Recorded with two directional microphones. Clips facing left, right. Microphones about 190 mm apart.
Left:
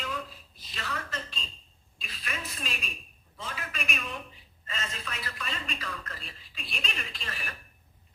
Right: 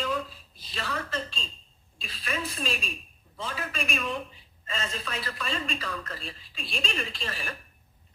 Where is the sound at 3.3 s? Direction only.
30° right (ahead or behind).